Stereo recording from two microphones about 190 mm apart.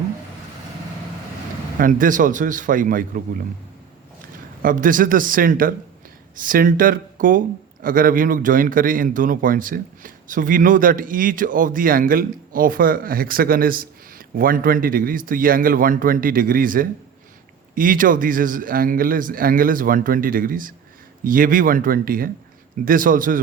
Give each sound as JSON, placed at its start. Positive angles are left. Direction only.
{"t": 1.8, "sound": "speech", "side_deg": -45}
{"t": 4.6, "sound": "speech", "side_deg": -45}